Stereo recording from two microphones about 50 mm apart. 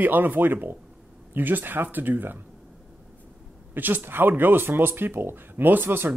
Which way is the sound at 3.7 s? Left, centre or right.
Right.